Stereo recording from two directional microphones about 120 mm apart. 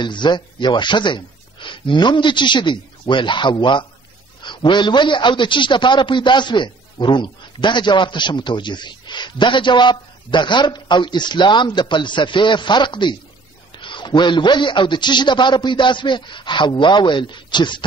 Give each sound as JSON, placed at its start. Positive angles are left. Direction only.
{"t": 0.0, "sound": "a man's voice", "side_deg": 40}